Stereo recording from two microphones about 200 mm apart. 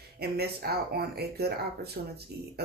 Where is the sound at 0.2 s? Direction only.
50° right (ahead or behind).